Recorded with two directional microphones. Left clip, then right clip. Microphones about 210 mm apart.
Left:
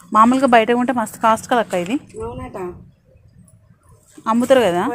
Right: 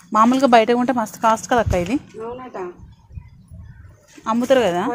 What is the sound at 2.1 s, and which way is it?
Speech, 50° left (ahead or behind).